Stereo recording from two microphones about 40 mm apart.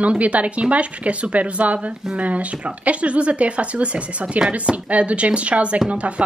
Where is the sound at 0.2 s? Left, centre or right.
Right.